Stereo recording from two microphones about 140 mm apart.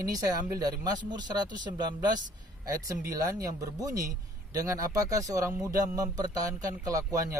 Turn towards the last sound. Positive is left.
turn(degrees=-25)  # may be behind; listen again after turning